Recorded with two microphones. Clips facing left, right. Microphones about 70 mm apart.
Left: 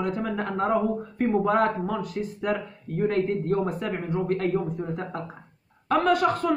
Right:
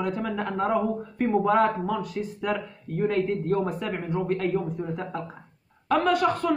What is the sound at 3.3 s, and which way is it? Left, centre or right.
Speech, left.